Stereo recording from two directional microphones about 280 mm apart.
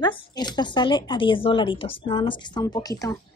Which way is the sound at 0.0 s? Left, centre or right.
Centre.